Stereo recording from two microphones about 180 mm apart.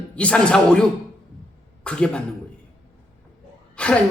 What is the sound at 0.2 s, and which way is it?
A man's voice, 5° left (ahead or behind).